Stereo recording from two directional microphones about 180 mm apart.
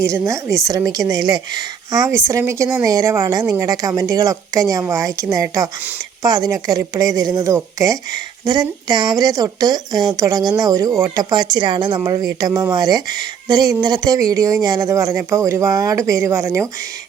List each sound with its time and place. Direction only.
0.0 s a woman's voice: 15° right (ahead or behind)